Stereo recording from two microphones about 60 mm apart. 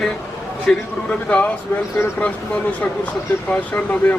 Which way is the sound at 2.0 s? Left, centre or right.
Left.